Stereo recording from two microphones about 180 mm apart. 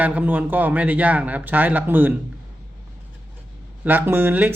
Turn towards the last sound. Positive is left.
turn(degrees=-10)  # may be behind; listen again after turning